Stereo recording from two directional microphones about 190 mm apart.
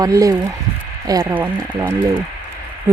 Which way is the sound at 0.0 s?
15° right (ahead or behind).